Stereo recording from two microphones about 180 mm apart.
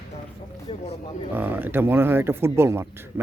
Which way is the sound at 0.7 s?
30° left (ahead or behind).